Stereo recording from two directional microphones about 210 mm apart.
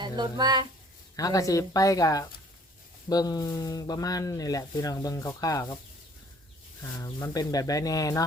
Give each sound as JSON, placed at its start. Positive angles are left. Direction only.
{"t": 0.0, "sound": "speech", "side_deg": -20}
{"t": 1.1, "sound": "speech", "side_deg": 15}
{"t": 7.0, "sound": "speech", "side_deg": 15}